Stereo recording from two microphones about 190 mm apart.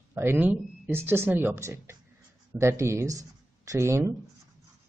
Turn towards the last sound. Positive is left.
turn(degrees=-15)  # may be behind; listen again after turning